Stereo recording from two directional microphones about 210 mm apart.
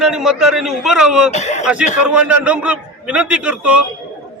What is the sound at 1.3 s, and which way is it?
Speech, 35° left (ahead or behind).